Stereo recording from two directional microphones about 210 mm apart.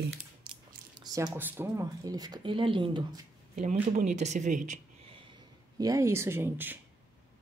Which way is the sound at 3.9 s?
35° right (ahead or behind).